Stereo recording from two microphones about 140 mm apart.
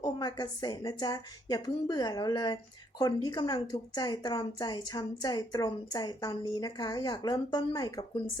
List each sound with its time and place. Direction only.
0.0 s a woman's voice: 30° left (ahead or behind)